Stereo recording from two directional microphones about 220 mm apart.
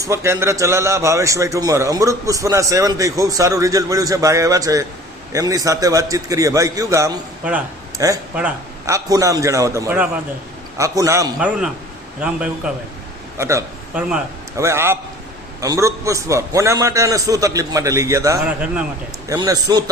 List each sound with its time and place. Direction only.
0.0 s a man's voice: 15° right (ahead or behind)
11.3 s a man's voice: 5° right (ahead or behind)
19.3 s a man's voice: 15° right (ahead or behind)